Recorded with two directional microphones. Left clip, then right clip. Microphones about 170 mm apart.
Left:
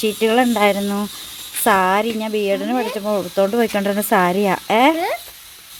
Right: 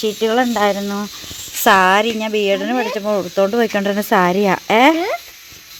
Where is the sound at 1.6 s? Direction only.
Centre (ahead or behind).